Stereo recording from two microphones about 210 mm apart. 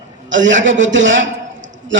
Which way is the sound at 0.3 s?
60° right (ahead or behind).